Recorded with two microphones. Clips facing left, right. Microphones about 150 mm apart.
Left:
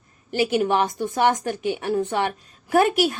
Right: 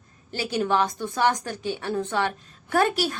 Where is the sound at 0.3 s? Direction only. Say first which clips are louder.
Left 4 dB; 15° left (ahead or behind).